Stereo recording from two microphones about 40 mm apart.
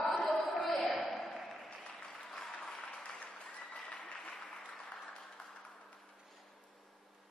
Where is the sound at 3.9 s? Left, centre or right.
Left.